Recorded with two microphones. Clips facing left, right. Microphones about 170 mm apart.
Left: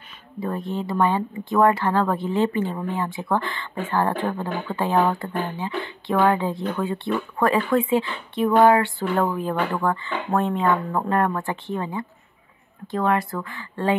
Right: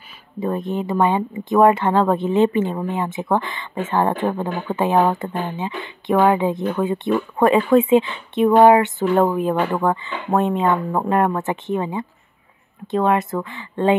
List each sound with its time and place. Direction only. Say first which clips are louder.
0.4 s speech: right 4 dB; 20° right (ahead or behind)